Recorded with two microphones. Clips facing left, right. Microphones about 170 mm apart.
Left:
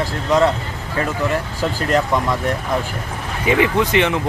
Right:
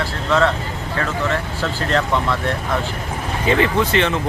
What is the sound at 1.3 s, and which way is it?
Speech, 15° left (ahead or behind).